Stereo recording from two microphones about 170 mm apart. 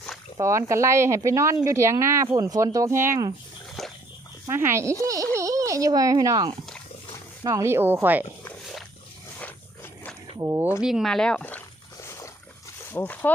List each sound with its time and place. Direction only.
0.3 s speech: 15° right (ahead or behind)
3.8 s splash: centre (ahead or behind)
4.4 s speech: 15° right (ahead or behind)
9.4 s a sound: 10° left (ahead or behind)
10.3 s speech: 15° right (ahead or behind)
10.8 s speech: 5° right (ahead or behind)
12.0 s a sound: 15° left (ahead or behind)
12.9 s speech: 10° left (ahead or behind)